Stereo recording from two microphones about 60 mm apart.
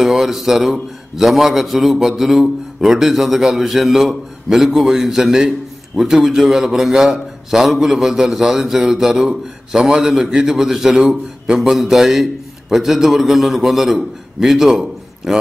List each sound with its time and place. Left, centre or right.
0.0 s a man's voice: centre